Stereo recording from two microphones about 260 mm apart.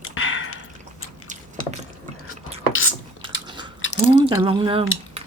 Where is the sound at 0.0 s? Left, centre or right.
Left.